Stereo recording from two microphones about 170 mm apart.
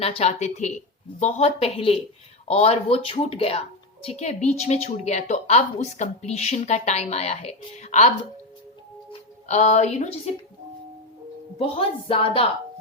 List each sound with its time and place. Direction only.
0.0 s speech: 35° left (ahead or behind)
9.5 s speech: 40° left (ahead or behind)
11.5 s speech: 35° left (ahead or behind)